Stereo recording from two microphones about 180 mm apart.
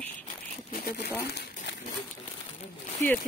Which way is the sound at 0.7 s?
50° left (ahead or behind).